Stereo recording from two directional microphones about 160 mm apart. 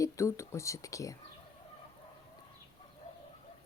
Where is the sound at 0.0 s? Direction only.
20° left (ahead or behind).